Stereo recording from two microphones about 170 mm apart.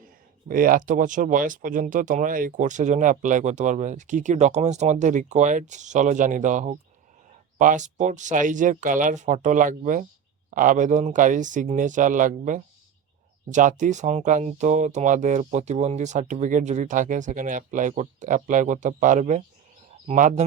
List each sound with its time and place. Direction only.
0.4 s speech: 55° right (ahead or behind)